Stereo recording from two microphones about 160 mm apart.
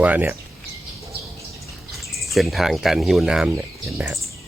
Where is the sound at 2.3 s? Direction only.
Centre (ahead or behind).